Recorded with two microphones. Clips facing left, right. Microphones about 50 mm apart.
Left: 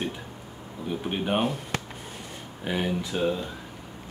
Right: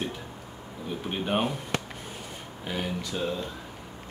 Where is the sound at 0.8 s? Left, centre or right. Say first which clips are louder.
Left 2 dB; centre.